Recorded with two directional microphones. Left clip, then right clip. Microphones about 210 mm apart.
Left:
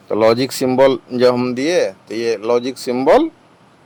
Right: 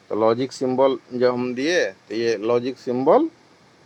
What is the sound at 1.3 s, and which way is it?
Speech, 15° left (ahead or behind).